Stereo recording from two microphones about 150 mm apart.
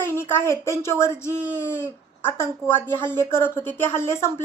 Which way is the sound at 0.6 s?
20° left (ahead or behind).